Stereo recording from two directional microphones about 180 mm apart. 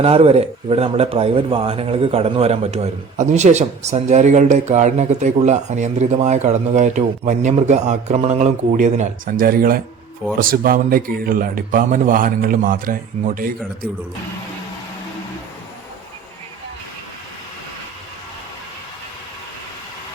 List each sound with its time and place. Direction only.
0.0 s a man's voice: 35° right (ahead or behind); by 13.5 s 50° right (ahead or behind)